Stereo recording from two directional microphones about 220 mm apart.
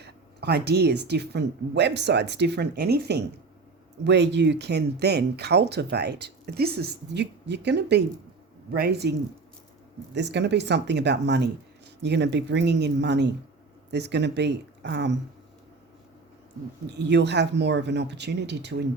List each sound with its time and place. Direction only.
0.0 s speech: 50° right (ahead or behind)
10.2 s speech: 50° right (ahead or behind)
16.9 s speech: 50° right (ahead or behind)